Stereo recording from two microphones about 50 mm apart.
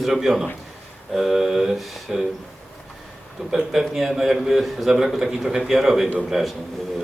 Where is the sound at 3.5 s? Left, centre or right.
Centre.